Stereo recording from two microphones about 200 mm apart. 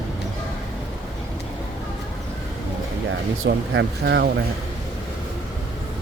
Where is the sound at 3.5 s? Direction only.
55° right (ahead or behind).